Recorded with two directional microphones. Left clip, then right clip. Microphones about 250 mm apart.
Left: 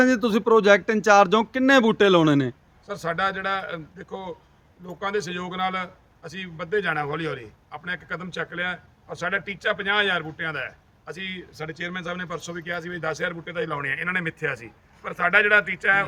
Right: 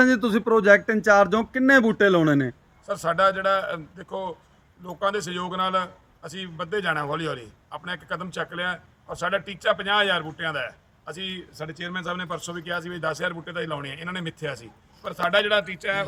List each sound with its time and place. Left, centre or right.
0.0 s a man's voice: centre
13.8 s speech: centre
14.6 s a man's voice: centre